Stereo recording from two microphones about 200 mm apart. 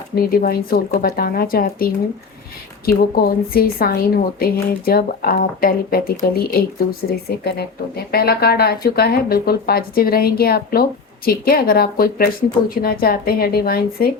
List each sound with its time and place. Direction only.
0.2 s speech: 50° left (ahead or behind)